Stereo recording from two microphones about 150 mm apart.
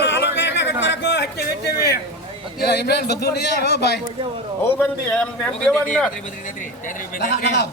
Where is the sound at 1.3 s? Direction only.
90° left.